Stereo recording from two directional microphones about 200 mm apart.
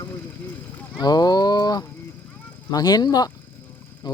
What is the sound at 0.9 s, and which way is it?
Livestock, 20° left (ahead or behind).